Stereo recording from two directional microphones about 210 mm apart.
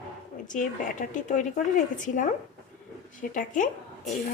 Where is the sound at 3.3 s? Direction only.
35° left (ahead or behind).